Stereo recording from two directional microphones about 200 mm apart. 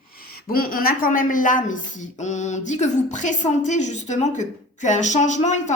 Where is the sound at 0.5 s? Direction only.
45° left (ahead or behind).